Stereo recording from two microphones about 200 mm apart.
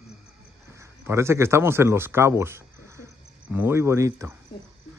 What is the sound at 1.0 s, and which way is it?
Speech, 15° right (ahead or behind).